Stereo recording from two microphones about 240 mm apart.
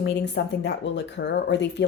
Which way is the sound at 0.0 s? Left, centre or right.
Left.